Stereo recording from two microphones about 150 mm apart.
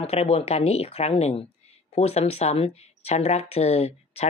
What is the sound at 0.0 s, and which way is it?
Speech, 40° left (ahead or behind).